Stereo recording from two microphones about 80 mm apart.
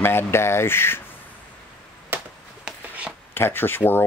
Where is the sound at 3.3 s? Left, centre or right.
Left.